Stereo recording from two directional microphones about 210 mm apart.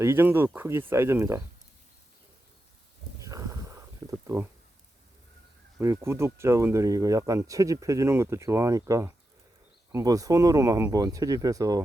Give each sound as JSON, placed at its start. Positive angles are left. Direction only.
{"t": 0.0, "sound": "speech", "side_deg": -10}
{"t": 3.2, "sound": "a sound", "side_deg": -15}
{"t": 5.8, "sound": "speech", "side_deg": -15}